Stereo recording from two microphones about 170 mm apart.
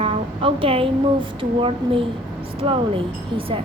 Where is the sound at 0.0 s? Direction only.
35° right (ahead or behind).